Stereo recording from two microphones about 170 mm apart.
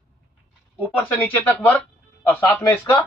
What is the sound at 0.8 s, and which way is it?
Speech, 10° left (ahead or behind).